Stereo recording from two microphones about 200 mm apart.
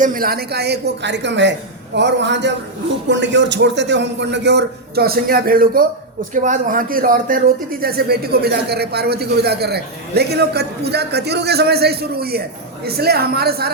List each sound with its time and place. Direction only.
0.0 s a man's voice: 45° right (ahead or behind)